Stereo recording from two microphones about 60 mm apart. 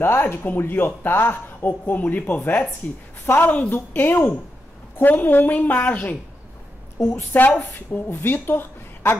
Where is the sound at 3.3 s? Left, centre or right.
Left.